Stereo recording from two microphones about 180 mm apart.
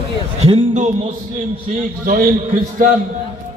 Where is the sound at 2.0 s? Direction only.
55° right (ahead or behind).